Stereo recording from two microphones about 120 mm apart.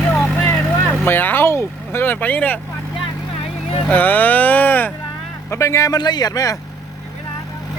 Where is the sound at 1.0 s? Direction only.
15° left (ahead or behind).